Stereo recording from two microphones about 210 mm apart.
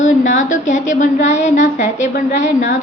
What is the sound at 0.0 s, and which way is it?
A woman's voice, 35° left (ahead or behind).